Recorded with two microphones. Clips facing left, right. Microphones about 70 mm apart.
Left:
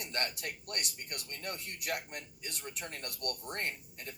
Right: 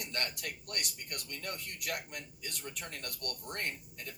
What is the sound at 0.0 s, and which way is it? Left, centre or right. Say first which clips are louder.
Speech: left 1 dB; left.